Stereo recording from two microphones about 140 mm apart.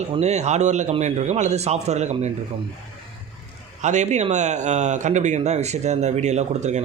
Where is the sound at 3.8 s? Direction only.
55° right (ahead or behind).